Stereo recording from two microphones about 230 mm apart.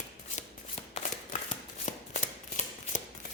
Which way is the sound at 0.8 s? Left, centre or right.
Left.